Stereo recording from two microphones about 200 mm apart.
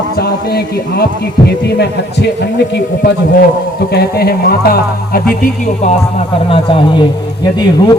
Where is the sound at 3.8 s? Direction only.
50° left (ahead or behind).